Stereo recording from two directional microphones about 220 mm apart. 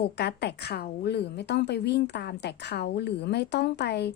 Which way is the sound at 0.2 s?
50° left (ahead or behind).